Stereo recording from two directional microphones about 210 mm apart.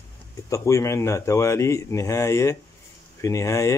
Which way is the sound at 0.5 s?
15° left (ahead or behind).